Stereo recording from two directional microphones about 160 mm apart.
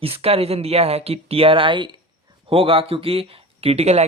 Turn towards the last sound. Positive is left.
turn(degrees=-40)  # may be behind; listen again after turning